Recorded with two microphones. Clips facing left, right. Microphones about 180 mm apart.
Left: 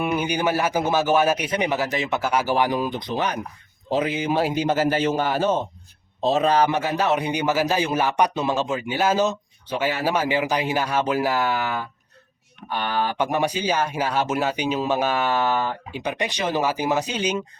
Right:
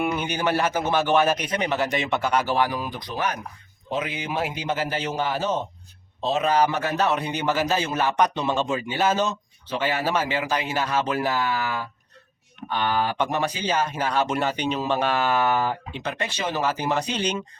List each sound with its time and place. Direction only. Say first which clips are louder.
0.2 s speech: left 2 dB; 10° left (ahead or behind)
3.8 s speech: left 6 dB; 35° left (ahead or behind); by 5.5 s 50° left (ahead or behind)
6.2 s a man's voice: left 4 dB; 35° left (ahead or behind)
6.7 s speech: left 2 dB; 10° left (ahead or behind)
12.6 s speech: right 1 dB; 10° left (ahead or behind)